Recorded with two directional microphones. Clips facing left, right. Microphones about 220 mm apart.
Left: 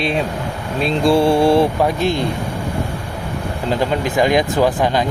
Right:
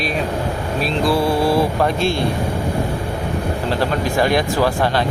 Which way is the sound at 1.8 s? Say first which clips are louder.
Left 1 dB; 15° left (ahead or behind).